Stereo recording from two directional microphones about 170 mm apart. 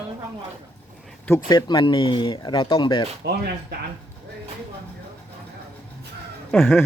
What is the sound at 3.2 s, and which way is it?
Speech, 70° right (ahead or behind).